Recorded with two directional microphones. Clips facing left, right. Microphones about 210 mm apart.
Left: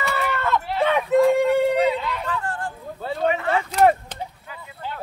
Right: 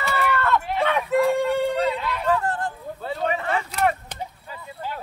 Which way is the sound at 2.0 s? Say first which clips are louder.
Left 1 dB; 10° right (ahead or behind).